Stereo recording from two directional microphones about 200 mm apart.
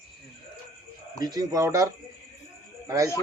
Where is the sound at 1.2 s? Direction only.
20° right (ahead or behind).